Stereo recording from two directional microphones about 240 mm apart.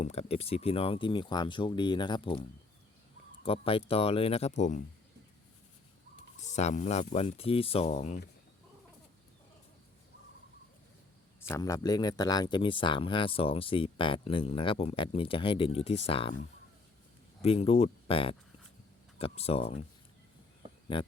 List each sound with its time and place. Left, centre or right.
0.0 s speech: left
6.4 s speech: left
11.3 s speech: centre
17.4 s speech: left
20.9 s speech: left